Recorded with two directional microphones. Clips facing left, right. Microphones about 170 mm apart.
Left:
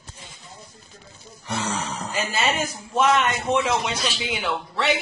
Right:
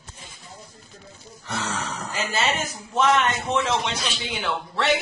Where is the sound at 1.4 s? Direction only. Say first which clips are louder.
Left 2 dB; 15° left (ahead or behind).